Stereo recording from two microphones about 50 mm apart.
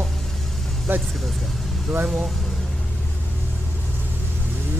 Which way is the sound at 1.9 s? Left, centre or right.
Centre.